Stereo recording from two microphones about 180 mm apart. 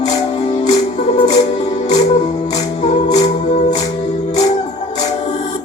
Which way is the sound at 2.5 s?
40° left (ahead or behind).